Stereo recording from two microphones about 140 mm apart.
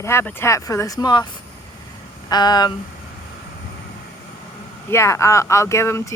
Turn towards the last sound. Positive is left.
turn(degrees=20)  # may be behind; listen again after turning